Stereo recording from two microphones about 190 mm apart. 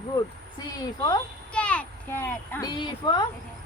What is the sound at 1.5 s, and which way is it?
A child's voice, 5° left (ahead or behind).